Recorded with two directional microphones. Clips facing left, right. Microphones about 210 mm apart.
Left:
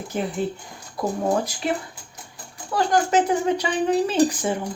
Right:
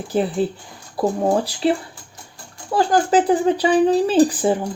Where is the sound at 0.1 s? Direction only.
35° right (ahead or behind).